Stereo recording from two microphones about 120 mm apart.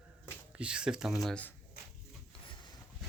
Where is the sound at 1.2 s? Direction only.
10° left (ahead or behind).